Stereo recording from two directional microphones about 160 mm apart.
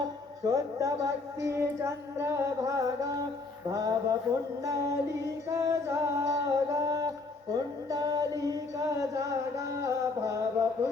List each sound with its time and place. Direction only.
0.0 s speech: 20° right (ahead or behind)
1.5 s singing: 20° right (ahead or behind)
9.8 s music: 20° right (ahead or behind)